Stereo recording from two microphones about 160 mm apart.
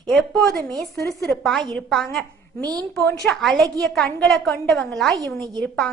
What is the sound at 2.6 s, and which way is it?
Speech, 25° right (ahead or behind).